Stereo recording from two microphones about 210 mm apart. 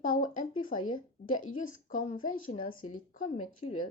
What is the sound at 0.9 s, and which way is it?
Speech, 40° left (ahead or behind).